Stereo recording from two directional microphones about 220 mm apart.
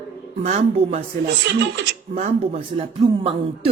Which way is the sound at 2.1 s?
30° right (ahead or behind).